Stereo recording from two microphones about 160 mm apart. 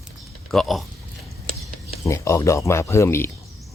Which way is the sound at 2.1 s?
20° left (ahead or behind).